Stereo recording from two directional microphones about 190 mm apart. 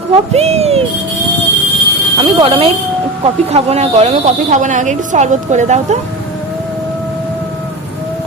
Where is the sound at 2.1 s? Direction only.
25° right (ahead or behind).